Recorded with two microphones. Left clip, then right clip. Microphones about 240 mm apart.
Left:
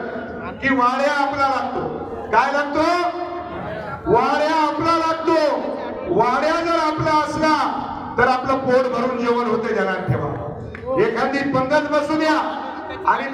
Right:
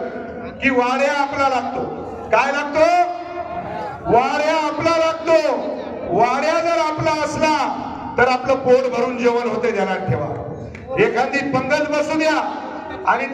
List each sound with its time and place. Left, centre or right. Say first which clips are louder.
0.6 s a man's voice: right 1 dB; right
4.1 s a sound: right 1 dB; right
8.1 s a man's voice: right 1 dB; right